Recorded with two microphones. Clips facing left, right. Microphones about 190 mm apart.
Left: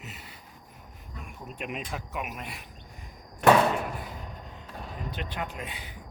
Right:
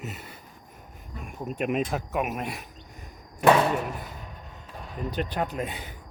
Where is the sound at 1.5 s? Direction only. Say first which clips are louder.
Right 9 dB; 45° right (ahead or behind).